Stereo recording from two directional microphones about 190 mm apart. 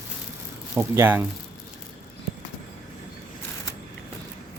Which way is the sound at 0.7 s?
10° right (ahead or behind).